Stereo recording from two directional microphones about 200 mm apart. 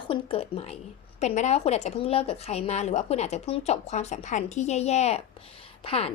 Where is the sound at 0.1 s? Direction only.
25° left (ahead or behind).